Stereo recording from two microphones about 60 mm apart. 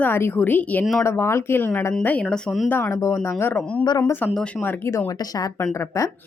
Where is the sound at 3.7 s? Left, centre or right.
Left.